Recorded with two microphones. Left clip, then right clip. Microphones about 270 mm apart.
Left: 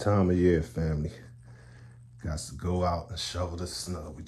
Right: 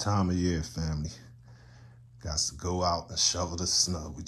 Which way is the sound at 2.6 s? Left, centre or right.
Centre.